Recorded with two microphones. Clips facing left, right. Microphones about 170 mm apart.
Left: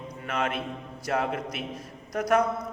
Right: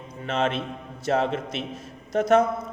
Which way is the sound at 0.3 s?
25° right (ahead or behind).